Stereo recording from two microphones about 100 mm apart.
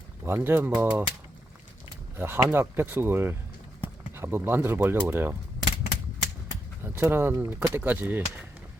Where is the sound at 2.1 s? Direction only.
25° right (ahead or behind).